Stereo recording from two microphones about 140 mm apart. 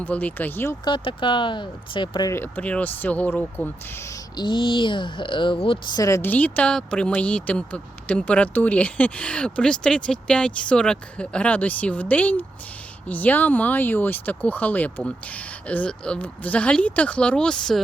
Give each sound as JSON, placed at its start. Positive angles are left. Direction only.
{"t": 0.0, "sound": "speech", "side_deg": 10}
{"t": 0.9, "sound": "speech", "side_deg": 35}
{"t": 2.3, "sound": "speech", "side_deg": 10}
{"t": 4.4, "sound": "speech", "side_deg": 35}
{"t": 6.3, "sound": "speech", "side_deg": 10}